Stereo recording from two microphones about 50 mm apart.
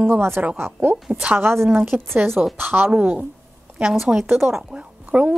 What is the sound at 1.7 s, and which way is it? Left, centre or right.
Speech, right.